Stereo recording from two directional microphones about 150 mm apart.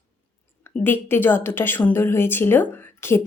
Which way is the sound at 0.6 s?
15° left (ahead or behind).